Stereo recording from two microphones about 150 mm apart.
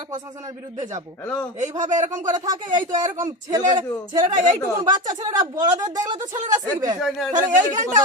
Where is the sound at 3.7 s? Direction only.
30° right (ahead or behind).